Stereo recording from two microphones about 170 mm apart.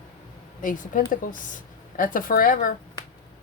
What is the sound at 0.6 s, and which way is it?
A woman's voice, 50° left (ahead or behind).